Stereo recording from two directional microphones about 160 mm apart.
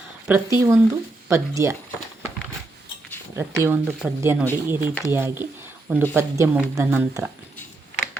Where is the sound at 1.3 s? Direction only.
20° right (ahead or behind).